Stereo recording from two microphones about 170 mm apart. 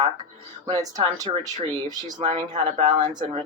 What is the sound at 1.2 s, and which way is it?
Speech, 40° right (ahead or behind).